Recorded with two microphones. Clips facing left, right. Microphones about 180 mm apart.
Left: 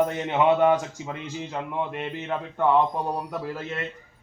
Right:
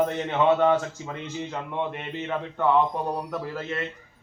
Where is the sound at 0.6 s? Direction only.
15° left (ahead or behind).